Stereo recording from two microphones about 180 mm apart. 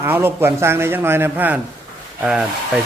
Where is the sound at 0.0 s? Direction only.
10° right (ahead or behind).